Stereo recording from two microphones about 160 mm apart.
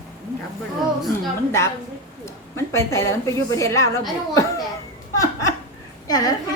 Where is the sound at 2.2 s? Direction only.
15° left (ahead or behind).